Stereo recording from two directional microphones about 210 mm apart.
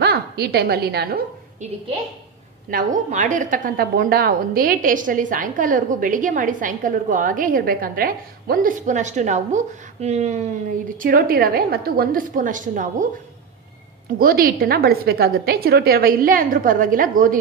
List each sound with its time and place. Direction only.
0.0 s a woman's voice: 50° right (ahead or behind)
2.7 s a woman's voice: 35° right (ahead or behind)
11.0 s a woman's voice: 40° right (ahead or behind)
14.1 s a woman's voice: 45° right (ahead or behind)